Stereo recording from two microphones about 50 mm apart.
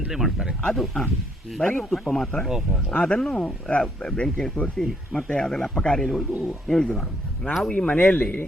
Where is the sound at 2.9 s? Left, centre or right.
Left; by 7.5 s centre.